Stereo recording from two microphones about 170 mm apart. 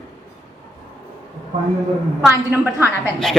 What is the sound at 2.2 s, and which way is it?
Speech, 10° right (ahead or behind).